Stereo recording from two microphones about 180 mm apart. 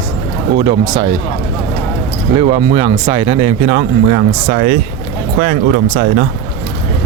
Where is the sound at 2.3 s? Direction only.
30° right (ahead or behind).